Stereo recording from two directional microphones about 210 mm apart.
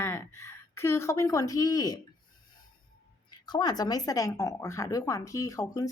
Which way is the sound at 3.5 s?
20° left (ahead or behind).